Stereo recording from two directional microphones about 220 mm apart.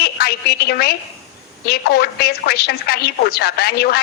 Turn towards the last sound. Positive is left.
turn(degrees=45)  # may be behind; listen again after turning